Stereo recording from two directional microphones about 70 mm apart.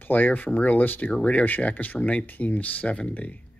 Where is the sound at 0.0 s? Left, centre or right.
Left.